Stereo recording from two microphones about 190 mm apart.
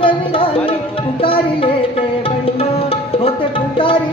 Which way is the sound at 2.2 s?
30° left (ahead or behind).